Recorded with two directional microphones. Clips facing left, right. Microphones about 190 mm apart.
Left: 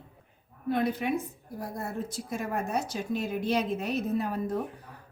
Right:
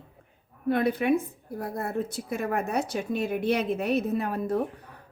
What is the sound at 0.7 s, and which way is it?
A woman's voice, 60° right (ahead or behind).